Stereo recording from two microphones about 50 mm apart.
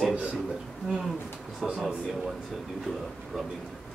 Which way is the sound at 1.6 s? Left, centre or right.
Centre.